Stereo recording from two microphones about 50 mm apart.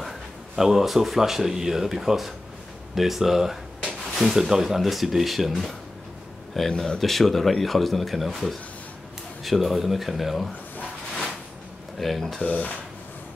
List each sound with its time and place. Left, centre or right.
0.6 s speech: centre
6.5 s speech: centre
12.0 s speech: centre
12.4 s speech: left